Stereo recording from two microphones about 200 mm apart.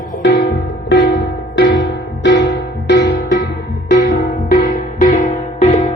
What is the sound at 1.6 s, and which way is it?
Music, 65° left (ahead or behind).